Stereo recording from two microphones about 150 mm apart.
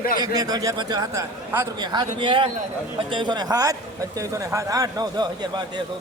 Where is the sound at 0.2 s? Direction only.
25° right (ahead or behind).